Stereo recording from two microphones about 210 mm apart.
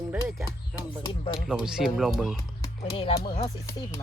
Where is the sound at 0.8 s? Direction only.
20° left (ahead or behind).